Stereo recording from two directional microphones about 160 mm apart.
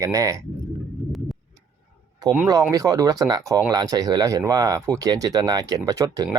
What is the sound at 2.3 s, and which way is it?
Speech, 15° right (ahead or behind).